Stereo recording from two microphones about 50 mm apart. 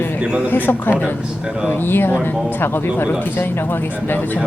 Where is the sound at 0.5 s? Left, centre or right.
Left.